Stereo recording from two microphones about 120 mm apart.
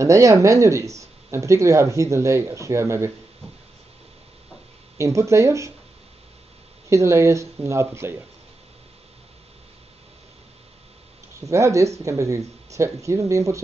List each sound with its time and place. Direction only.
0.0 s speech: 25° right (ahead or behind)
4.9 s speech: 25° right (ahead or behind)
6.9 s speech: 25° right (ahead or behind)
11.4 s speech: 25° right (ahead or behind)